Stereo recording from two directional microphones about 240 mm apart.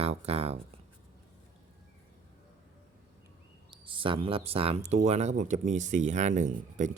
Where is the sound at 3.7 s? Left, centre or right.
Right.